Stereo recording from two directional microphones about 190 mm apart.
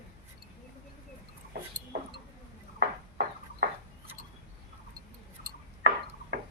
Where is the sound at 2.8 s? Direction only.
60° right (ahead or behind).